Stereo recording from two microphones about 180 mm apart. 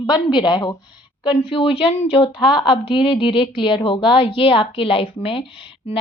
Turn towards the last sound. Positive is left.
turn(degrees=25)  # may be behind; listen again after turning